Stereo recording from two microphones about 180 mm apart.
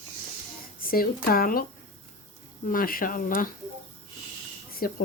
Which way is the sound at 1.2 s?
55° left (ahead or behind).